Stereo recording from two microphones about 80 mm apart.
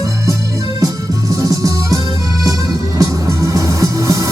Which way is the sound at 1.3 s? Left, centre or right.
Right.